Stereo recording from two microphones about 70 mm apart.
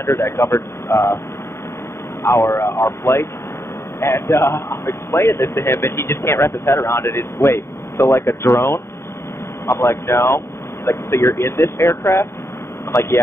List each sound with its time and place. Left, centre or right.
0.0 s a man's voice: left
2.2 s a man's voice: left
12.9 s speech: left